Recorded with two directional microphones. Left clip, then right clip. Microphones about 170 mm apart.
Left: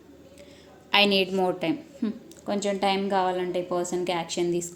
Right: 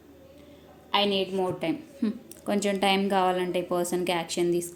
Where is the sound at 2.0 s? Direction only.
5° right (ahead or behind).